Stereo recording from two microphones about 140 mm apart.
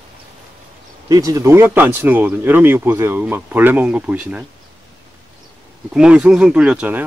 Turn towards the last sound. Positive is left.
turn(degrees=-10)  # may be behind; listen again after turning